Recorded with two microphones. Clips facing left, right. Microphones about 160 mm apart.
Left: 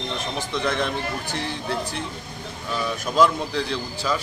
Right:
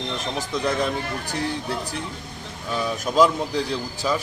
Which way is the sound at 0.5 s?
15° right (ahead or behind).